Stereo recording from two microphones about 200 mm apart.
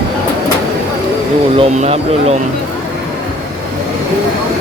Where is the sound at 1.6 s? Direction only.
30° right (ahead or behind).